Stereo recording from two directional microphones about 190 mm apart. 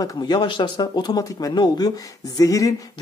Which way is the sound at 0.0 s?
25° left (ahead or behind).